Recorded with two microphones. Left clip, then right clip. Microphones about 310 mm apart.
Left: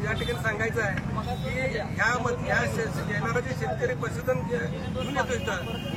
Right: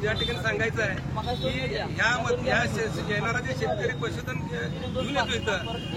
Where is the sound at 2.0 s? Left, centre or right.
Centre.